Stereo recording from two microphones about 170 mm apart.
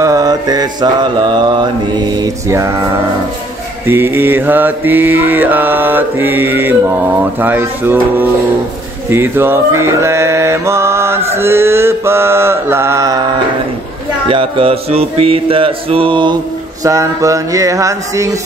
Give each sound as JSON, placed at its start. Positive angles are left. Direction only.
{"t": 0.0, "sound": "mantra", "side_deg": -20}
{"t": 14.2, "sound": "mantra", "side_deg": -30}